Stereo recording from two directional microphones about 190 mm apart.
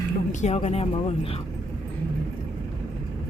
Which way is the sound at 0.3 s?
40° left (ahead or behind).